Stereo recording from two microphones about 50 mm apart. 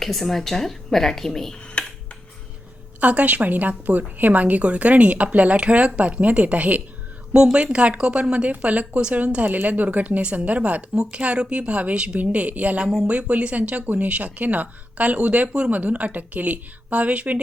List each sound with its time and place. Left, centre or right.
0.0 s a woman's voice: centre
1.8 s a sound: centre
3.0 s speech: right